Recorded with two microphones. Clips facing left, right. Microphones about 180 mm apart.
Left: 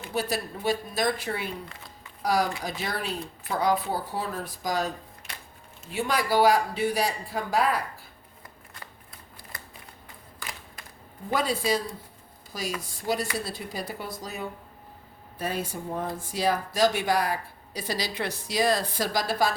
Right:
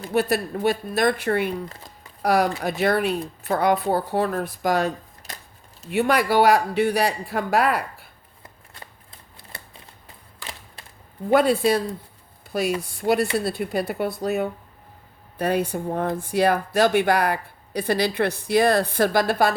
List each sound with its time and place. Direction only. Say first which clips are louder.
0.1 s speech: right 8 dB; 65° right (ahead or behind)
1.7 s a sound: right 3 dB; 40° right (ahead or behind)
2.2 s speech: right 5 dB; 60° right (ahead or behind)
5.3 s a sound: right 4 dB; 40° right (ahead or behind)
5.9 s speech: right 6 dB; 65° right (ahead or behind)
11.3 s speech: right 8 dB; 60° right (ahead or behind)
12.8 s speech: right 8 dB; 60° right (ahead or behind)